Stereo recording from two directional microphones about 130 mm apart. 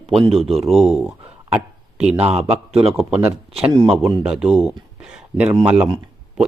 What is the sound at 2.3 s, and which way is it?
Speech, 50° right (ahead or behind).